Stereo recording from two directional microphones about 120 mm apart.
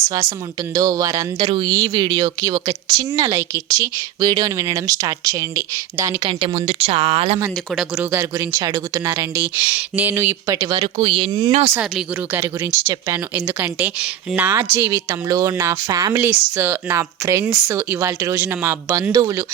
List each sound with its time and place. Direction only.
0.1 s speech: 30° right (ahead or behind)
1.4 s speech: 40° right (ahead or behind)
6.2 s speech: 55° right (ahead or behind)
8.1 s speech: 25° right (ahead or behind)
10.8 s speech: 50° right (ahead or behind)
11.3 s speech: 35° right (ahead or behind)
12.7 s speech: 15° right (ahead or behind)
16.1 s speech: 20° right (ahead or behind)